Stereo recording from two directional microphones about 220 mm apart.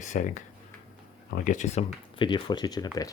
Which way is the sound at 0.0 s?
35° left (ahead or behind).